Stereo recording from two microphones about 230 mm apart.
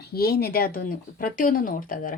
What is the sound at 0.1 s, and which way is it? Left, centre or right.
Speech, left.